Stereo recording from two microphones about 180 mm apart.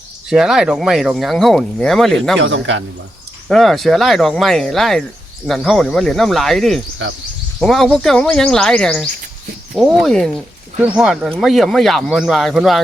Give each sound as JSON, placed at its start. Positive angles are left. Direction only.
{"t": 0.3, "sound": "speech", "side_deg": -5}
{"t": 2.4, "sound": "a man's voice", "side_deg": -90}
{"t": 3.5, "sound": "speech", "side_deg": 0}